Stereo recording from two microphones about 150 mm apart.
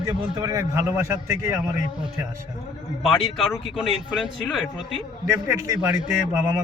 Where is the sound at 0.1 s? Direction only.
25° right (ahead or behind).